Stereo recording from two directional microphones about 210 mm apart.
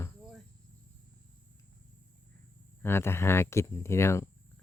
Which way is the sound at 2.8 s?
10° left (ahead or behind).